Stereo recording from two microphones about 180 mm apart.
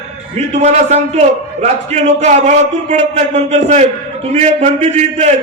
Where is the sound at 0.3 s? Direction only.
40° right (ahead or behind).